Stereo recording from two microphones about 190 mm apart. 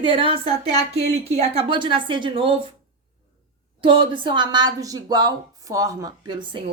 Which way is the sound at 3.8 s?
25° right (ahead or behind).